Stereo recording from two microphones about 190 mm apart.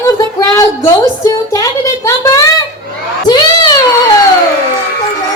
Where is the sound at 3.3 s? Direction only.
20° left (ahead or behind).